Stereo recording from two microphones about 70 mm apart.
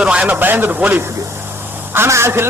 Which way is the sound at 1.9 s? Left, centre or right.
Right.